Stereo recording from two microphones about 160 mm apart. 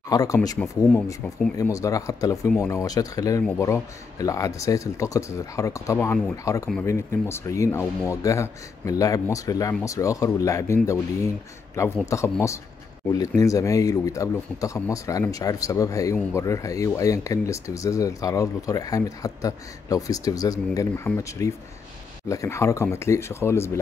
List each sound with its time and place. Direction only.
0.1 s speech: 20° left (ahead or behind)
1.6 s speech: 20° left (ahead or behind)